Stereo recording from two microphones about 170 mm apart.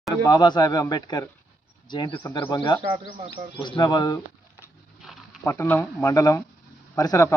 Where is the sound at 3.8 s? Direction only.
25° left (ahead or behind).